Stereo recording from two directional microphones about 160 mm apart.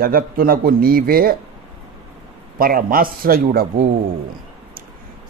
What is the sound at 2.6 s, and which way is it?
Speech, 60° right (ahead or behind).